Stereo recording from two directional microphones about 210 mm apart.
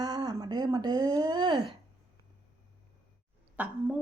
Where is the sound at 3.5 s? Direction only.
5° right (ahead or behind).